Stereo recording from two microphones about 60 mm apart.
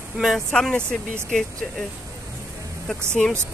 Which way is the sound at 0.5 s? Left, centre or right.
Centre.